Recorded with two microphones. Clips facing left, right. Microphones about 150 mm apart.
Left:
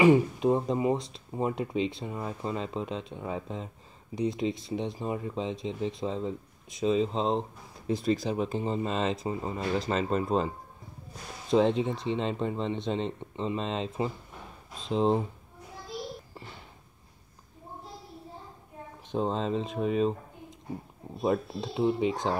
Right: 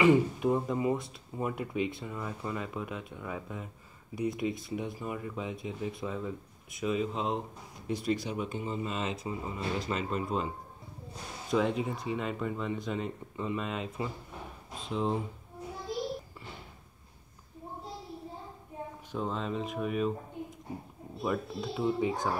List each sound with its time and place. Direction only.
0.0 s speech: 20° left (ahead or behind)
11.5 s speech: 30° left (ahead or behind)
19.1 s speech: 30° left (ahead or behind)
21.2 s speech: 25° left (ahead or behind)